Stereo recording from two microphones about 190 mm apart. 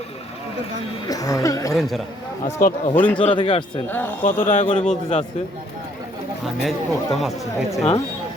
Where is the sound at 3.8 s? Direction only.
10° left (ahead or behind).